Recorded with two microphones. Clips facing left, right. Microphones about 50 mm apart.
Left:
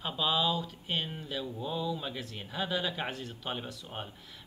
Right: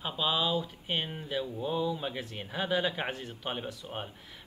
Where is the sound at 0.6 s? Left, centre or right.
Centre.